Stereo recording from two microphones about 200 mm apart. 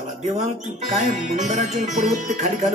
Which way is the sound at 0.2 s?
35° right (ahead or behind).